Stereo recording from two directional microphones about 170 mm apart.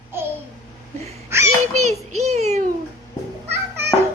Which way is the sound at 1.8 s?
40° right (ahead or behind).